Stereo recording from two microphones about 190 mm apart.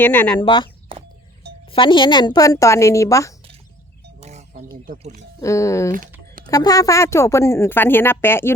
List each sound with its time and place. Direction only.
0.0 s a woman's voice: 10° left (ahead or behind)
0.3 s a woman's voice: 25° left (ahead or behind)
4.2 s music: 35° right (ahead or behind)
4.9 s speech: 40° right (ahead or behind)
5.4 s a woman's voice: 15° left (ahead or behind)